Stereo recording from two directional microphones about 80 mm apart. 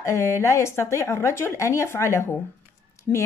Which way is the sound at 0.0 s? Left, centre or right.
Left.